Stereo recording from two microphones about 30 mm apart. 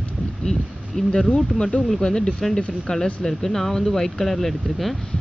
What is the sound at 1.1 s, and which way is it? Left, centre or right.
Speech, left.